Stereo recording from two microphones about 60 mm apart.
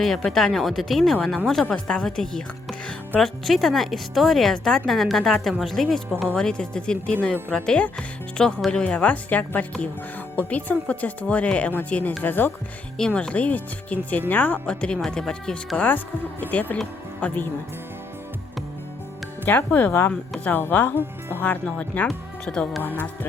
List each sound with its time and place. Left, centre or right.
0.3 s a woman's voice: centre
1.7 s a woman's voice: centre
13.0 s speech: centre
14.7 s speech: centre
16.4 s speech: left
19.5 s speech: left